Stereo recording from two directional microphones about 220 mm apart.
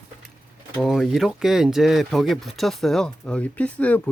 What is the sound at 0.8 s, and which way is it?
Speech, centre (ahead or behind).